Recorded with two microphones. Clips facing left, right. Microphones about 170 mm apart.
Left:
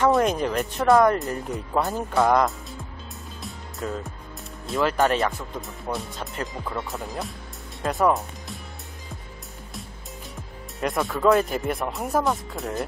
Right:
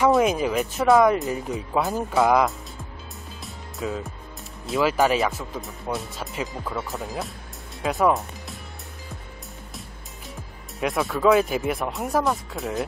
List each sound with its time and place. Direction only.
0.0 s speech: 5° right (ahead or behind)
3.4 s music: centre (ahead or behind)
4.6 s speech: 5° right (ahead or behind)
10.8 s speech: centre (ahead or behind)